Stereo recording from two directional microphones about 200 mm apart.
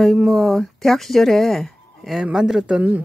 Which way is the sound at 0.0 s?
Centre (ahead or behind).